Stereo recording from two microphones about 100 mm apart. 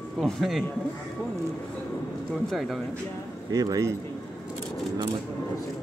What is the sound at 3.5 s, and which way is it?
Speech, 35° right (ahead or behind).